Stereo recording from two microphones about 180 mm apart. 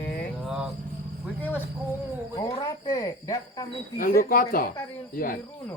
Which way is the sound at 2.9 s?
20° left (ahead or behind).